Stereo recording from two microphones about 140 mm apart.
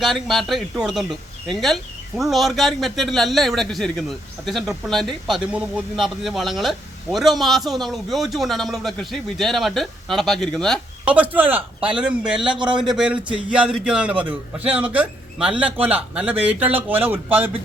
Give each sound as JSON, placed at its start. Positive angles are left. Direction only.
{"t": 0.0, "sound": "speech", "side_deg": 0}
{"t": 11.0, "sound": "a man's voice", "side_deg": -10}
{"t": 12.5, "sound": "a man's voice", "side_deg": -35}
{"t": 12.9, "sound": "a man's voice", "side_deg": -5}